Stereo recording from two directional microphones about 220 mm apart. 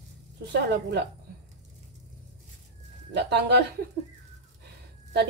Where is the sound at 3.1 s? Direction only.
50° right (ahead or behind).